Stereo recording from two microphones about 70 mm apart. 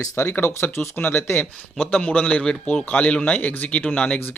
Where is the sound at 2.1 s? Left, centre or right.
Centre.